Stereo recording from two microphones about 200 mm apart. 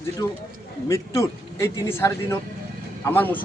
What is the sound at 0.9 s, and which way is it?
A man's voice, 15° left (ahead or behind).